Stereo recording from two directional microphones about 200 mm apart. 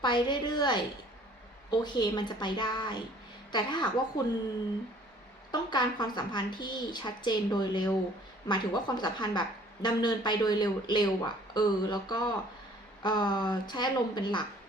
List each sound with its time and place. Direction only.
0.0 s speech: 20° left (ahead or behind)
5.5 s speech: 20° left (ahead or behind)